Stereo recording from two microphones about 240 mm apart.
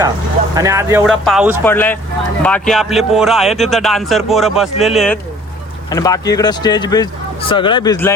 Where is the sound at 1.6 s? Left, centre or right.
Centre.